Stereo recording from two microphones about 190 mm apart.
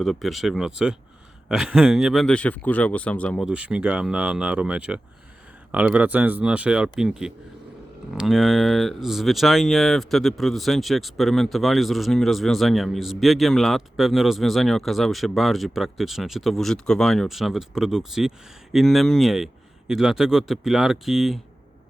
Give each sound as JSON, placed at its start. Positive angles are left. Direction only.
{"t": 0.0, "sound": "speech", "side_deg": 0}